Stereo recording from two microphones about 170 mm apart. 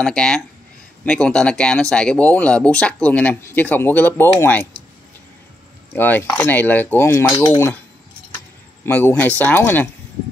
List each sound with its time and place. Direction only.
0.0 s speech: 5° left (ahead or behind)
5.9 s speech: 10° left (ahead or behind)
8.8 s speech: 15° left (ahead or behind)